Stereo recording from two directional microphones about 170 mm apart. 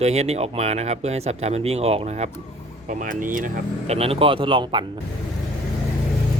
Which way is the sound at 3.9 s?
35° right (ahead or behind).